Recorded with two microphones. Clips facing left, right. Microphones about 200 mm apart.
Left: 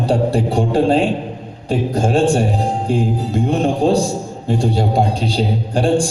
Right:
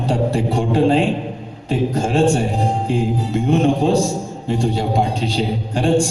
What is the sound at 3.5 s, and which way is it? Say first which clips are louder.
Speech: even; 35° left (ahead or behind).